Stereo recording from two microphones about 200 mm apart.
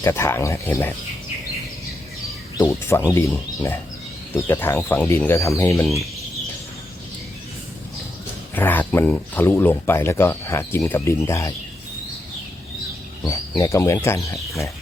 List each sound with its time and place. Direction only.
0.0 s speech: 15° left (ahead or behind)
2.6 s speech: 15° left (ahead or behind)
8.5 s speech: 10° left (ahead or behind)
13.6 s speech: 15° left (ahead or behind)